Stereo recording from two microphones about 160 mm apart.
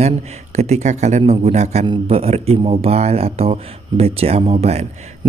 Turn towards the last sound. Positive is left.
turn(degrees=-40)  # may be behind; listen again after turning